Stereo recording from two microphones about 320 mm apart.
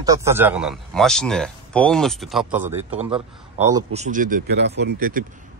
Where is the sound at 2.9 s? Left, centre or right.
Centre.